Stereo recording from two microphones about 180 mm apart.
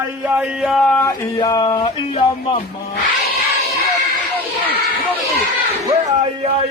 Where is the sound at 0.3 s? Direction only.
5° right (ahead or behind).